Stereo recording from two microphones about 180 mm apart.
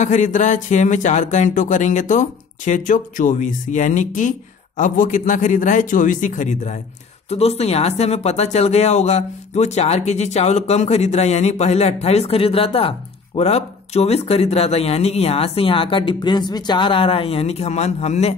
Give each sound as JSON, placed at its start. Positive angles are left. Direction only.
{"t": 0.0, "sound": "speech", "side_deg": 40}